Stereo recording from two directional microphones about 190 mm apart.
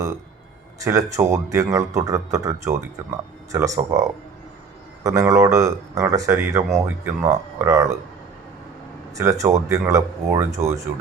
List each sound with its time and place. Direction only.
0.8 s speech: 15° right (ahead or behind)
9.1 s speech: 15° right (ahead or behind)